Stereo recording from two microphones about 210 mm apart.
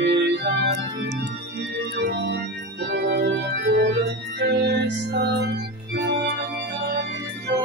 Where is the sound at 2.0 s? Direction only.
55° right (ahead or behind).